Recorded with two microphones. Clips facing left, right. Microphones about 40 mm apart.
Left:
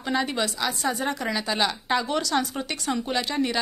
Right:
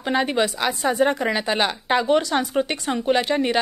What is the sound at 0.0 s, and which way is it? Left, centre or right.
A woman's voice, right.